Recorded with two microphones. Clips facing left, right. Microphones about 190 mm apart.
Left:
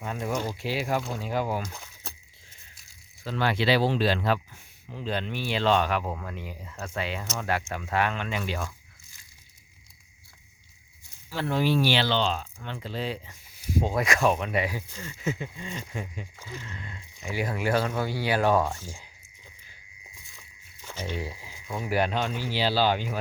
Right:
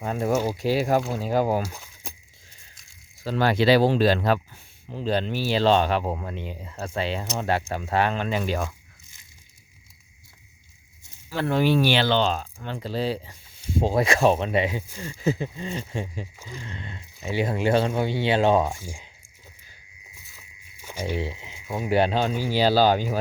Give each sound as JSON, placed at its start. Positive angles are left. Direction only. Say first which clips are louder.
{"t": 0.0, "sound": "speech", "louder": "right 6 dB", "side_deg": -40}
{"t": 1.6, "sound": "a sound", "louder": "right 4 dB", "side_deg": -10}
{"t": 3.2, "sound": "speech", "louder": "right 5 dB", "side_deg": -40}
{"t": 11.3, "sound": "speech", "louder": "right 4 dB", "side_deg": -55}
{"t": 18.7, "sound": "speech", "louder": "right 2 dB", "side_deg": -10}
{"t": 20.2, "sound": "a sound", "louder": "right 1 dB", "side_deg": -5}
{"t": 21.2, "sound": "speech", "louder": "right 5 dB", "side_deg": -25}
{"t": 22.3, "sound": "speech", "louder": "right 6 dB", "side_deg": -10}
{"t": 22.5, "sound": "speech", "louder": "right 6 dB", "side_deg": -45}